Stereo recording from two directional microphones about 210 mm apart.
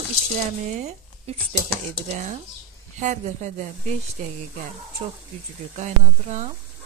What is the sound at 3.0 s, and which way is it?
Speech, 35° right (ahead or behind).